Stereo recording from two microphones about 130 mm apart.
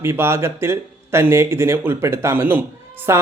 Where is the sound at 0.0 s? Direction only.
20° right (ahead or behind).